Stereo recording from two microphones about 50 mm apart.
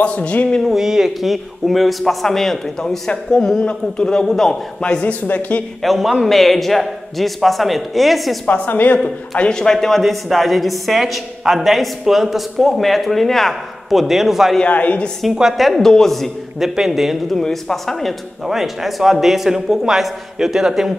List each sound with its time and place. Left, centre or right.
0.0 s speech: left
0.6 s a woman's voice: centre
5.0 s speech: left
5.8 s a woman's voice: centre
8.5 s speech: left
9.4 s a woman's voice: centre
14.7 s speech: left
15.3 s a woman's voice: centre
16.5 s a woman's voice: centre
17.4 s a man's voice: centre
18.5 s a woman's voice: centre